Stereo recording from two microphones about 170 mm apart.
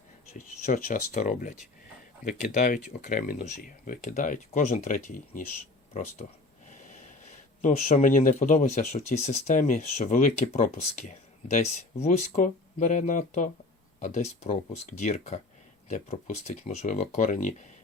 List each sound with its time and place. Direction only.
0.3 s speech: 50° left (ahead or behind)
6.7 s snort: 50° left (ahead or behind)
7.6 s speech: 40° left (ahead or behind)